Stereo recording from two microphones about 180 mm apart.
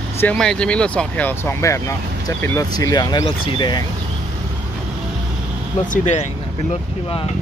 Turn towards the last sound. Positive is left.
turn(degrees=40)  # may be behind; listen again after turning